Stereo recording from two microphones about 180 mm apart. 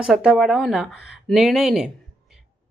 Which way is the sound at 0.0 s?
5° right (ahead or behind).